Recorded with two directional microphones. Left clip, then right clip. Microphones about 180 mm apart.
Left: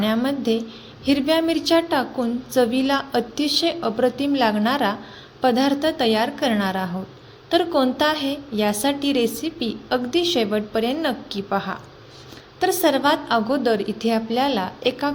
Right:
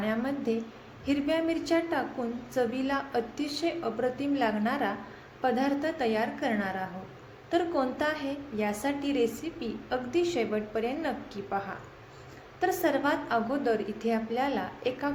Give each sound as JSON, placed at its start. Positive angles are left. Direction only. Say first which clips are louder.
{"t": 0.0, "sound": "a woman's voice", "louder": "left 9 dB", "side_deg": 50}